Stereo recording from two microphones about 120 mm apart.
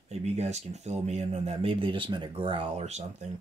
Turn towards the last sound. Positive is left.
turn(degrees=-70)  # may be behind; listen again after turning